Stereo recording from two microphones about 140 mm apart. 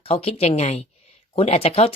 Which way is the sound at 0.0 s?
45° left (ahead or behind).